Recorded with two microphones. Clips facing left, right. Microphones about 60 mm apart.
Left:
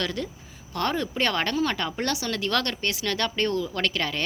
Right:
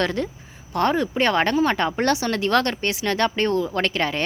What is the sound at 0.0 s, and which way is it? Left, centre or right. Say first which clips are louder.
Speech: right 6 dB; right.